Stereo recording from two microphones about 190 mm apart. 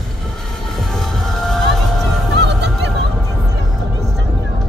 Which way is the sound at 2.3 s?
65° right (ahead or behind).